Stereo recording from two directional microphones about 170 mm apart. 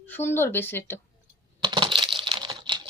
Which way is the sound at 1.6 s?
30° right (ahead or behind).